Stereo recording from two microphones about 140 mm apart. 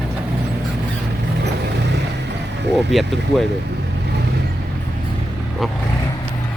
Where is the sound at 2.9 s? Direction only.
Centre (ahead or behind).